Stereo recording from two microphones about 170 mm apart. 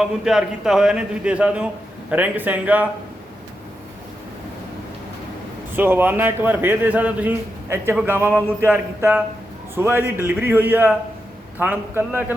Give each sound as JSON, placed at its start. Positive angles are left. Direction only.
{"t": 0.0, "sound": "a man's voice", "side_deg": -5}
{"t": 5.7, "sound": "a man's voice", "side_deg": -10}